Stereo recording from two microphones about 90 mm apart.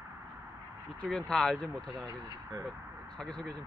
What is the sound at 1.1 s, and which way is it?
Speech, 5° left (ahead or behind).